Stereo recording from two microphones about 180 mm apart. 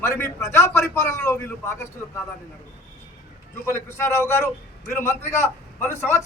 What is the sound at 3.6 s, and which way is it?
A man's voice, 15° left (ahead or behind).